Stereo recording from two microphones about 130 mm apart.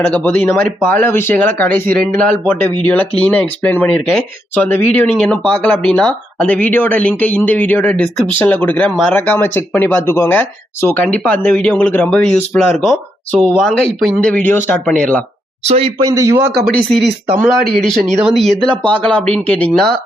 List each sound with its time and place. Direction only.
0.0 s speech: 10° left (ahead or behind)
15.6 s speech: 55° right (ahead or behind)
16.0 s a man's voice: 30° right (ahead or behind)
17.6 s a man's voice: centre (ahead or behind)